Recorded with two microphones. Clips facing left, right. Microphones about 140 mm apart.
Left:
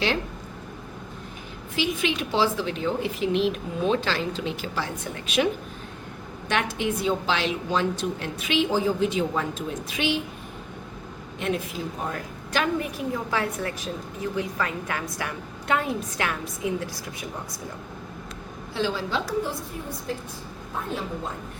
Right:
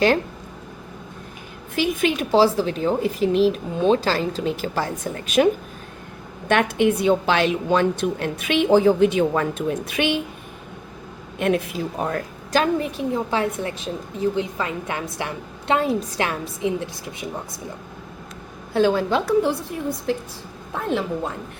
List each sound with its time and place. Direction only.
1.7 s a woman's voice: 50° right (ahead or behind)
6.5 s a woman's voice: 55° right (ahead or behind)
11.3 s a woman's voice: 60° right (ahead or behind)
12.5 s a woman's voice: 30° right (ahead or behind)
18.7 s a woman's voice: 55° right (ahead or behind)
20.1 s a woman's voice: 80° right